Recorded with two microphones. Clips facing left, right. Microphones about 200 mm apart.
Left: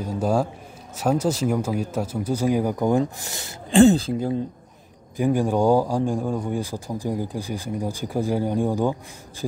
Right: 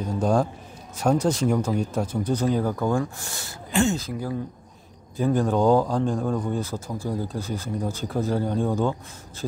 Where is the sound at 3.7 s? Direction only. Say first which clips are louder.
Left 9 dB; 30° left (ahead or behind).